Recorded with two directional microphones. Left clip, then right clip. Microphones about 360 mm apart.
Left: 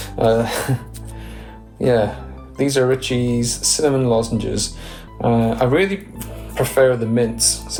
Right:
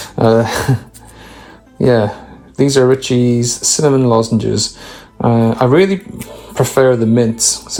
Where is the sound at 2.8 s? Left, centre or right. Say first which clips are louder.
Right 6 dB; right.